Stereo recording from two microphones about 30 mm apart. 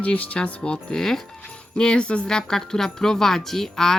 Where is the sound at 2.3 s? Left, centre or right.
Left.